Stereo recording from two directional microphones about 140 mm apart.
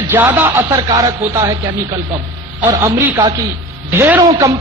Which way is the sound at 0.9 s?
30° right (ahead or behind).